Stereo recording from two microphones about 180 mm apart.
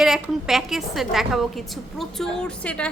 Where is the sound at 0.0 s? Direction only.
Centre (ahead or behind).